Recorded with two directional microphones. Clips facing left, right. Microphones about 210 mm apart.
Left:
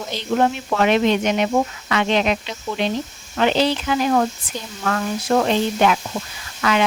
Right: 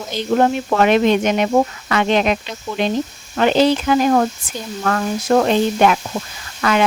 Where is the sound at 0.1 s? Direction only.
45° right (ahead or behind).